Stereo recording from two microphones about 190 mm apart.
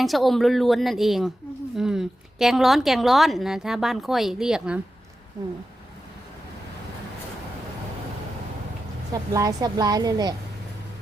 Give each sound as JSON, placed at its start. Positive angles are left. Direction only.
{"t": 0.0, "sound": "a woman's voice", "side_deg": 0}
{"t": 9.1, "sound": "speech", "side_deg": -20}